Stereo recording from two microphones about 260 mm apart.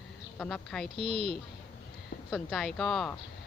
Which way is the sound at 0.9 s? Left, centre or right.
Right.